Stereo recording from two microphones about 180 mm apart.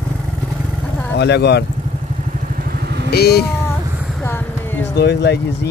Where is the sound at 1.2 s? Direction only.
70° left (ahead or behind).